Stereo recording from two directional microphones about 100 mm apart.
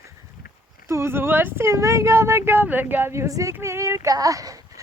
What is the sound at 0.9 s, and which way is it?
Speech, 25° right (ahead or behind).